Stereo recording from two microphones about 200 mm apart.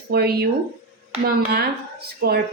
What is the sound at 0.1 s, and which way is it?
Speech, 55° right (ahead or behind).